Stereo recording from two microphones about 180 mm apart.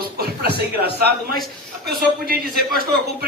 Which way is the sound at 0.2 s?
60° right (ahead or behind).